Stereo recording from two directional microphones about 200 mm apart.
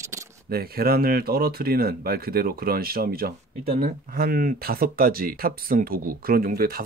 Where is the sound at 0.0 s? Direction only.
15° right (ahead or behind).